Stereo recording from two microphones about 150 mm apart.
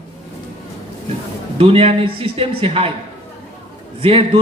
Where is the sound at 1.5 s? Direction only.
40° right (ahead or behind).